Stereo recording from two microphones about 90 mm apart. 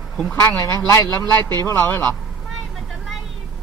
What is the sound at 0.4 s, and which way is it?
A man's voice, 35° left (ahead or behind).